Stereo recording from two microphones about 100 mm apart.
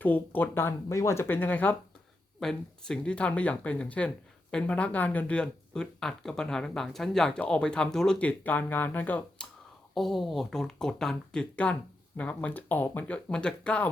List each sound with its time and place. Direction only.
0.0 s speech: 20° left (ahead or behind)
2.4 s speech: 5° left (ahead or behind)
9.9 s speech: centre (ahead or behind)